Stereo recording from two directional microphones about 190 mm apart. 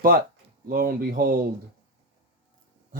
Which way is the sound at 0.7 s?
50° right (ahead or behind).